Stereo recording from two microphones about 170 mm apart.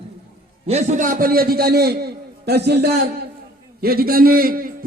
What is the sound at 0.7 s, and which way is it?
A man's voice, 40° right (ahead or behind).